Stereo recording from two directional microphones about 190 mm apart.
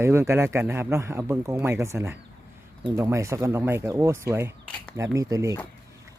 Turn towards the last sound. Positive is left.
turn(degrees=-15)  # may be behind; listen again after turning